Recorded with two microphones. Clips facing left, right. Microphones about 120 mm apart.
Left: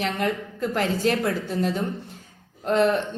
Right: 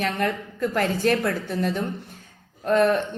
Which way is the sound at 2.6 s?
25° left (ahead or behind).